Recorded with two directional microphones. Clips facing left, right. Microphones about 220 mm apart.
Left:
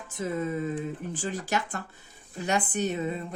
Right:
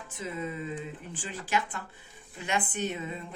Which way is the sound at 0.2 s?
45° left (ahead or behind).